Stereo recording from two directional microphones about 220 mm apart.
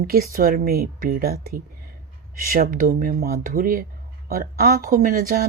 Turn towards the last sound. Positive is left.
turn(degrees=-40)  # may be behind; listen again after turning